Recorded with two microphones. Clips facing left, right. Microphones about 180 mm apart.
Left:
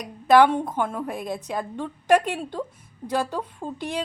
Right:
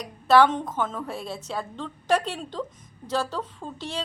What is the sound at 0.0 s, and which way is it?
A woman's voice, 15° left (ahead or behind).